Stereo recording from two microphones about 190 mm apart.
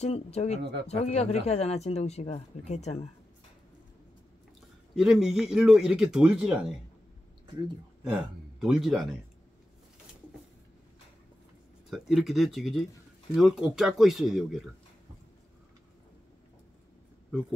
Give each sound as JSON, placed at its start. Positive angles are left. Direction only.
{"t": 0.0, "sound": "speech", "side_deg": 35}
{"t": 0.6, "sound": "speech", "side_deg": -60}
{"t": 0.8, "sound": "speech", "side_deg": 35}
{"t": 4.9, "sound": "a man's voice", "side_deg": -5}
{"t": 8.0, "sound": "speech", "side_deg": 0}
{"t": 11.9, "sound": "a man's voice", "side_deg": 0}